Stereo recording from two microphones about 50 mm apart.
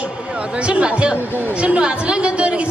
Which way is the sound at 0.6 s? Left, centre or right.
Right.